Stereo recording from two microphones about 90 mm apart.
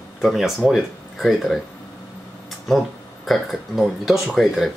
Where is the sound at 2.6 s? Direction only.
Centre (ahead or behind).